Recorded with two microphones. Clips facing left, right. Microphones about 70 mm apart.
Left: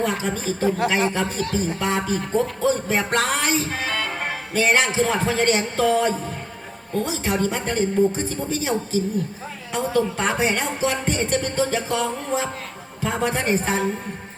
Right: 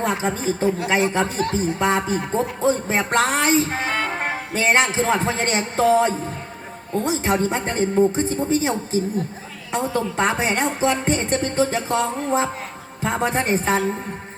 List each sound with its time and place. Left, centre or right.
0.0 s a man's voice: right